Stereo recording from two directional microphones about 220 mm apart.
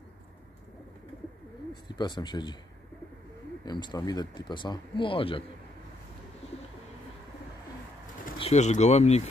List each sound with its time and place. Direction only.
1.7 s speech: 20° left (ahead or behind)
3.6 s speech: 20° left (ahead or behind)
8.4 s speech: 30° left (ahead or behind)